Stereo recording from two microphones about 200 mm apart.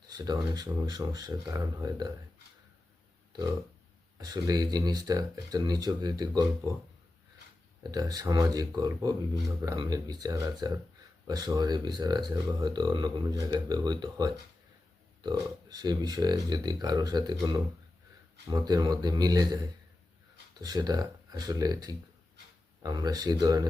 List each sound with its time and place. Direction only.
0.1 s speech: 20° right (ahead or behind)
4.2 s speech: 20° right (ahead or behind)
7.9 s speech: 20° right (ahead or behind)
18.4 s speech: 20° right (ahead or behind)
20.6 s speech: 20° right (ahead or behind)